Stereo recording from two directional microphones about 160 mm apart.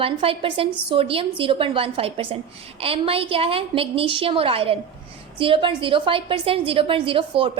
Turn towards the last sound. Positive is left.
turn(degrees=-35)  # may be behind; listen again after turning